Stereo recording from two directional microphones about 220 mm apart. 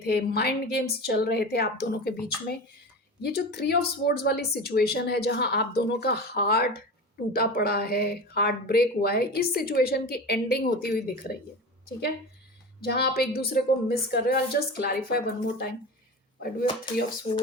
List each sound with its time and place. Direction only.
0.0 s a woman's voice: 45° left (ahead or behind)
12.8 s a woman's voice: 45° left (ahead or behind)
16.6 s speech: 20° left (ahead or behind)